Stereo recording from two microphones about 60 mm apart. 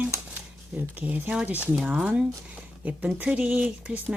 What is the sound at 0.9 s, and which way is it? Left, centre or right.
Speech, right.